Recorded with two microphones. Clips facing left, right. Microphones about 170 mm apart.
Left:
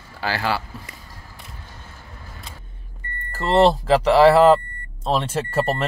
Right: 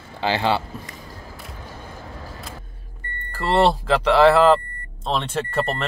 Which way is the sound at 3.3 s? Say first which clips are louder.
Left 2 dB; centre (ahead or behind).